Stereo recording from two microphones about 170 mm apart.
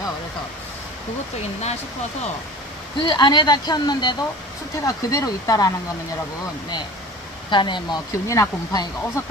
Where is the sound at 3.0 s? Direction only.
25° left (ahead or behind).